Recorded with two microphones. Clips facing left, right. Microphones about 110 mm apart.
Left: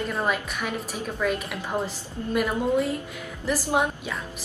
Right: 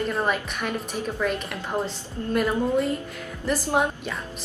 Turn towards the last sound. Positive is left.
turn(degrees=5)  # may be behind; listen again after turning